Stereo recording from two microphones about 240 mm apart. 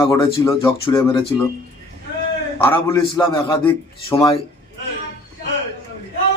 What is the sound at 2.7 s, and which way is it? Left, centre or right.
A man's voice, centre.